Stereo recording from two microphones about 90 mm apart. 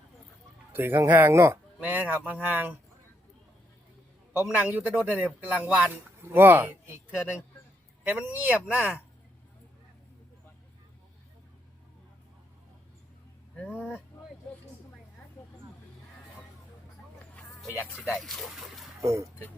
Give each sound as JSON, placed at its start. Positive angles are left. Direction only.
{"t": 0.7, "sound": "speech", "side_deg": -25}
{"t": 4.5, "sound": "speech", "side_deg": -20}
{"t": 6.2, "sound": "speech", "side_deg": -25}
{"t": 13.7, "sound": "speech", "side_deg": -5}
{"t": 18.0, "sound": "speech", "side_deg": 0}
{"t": 19.0, "sound": "speech", "side_deg": -35}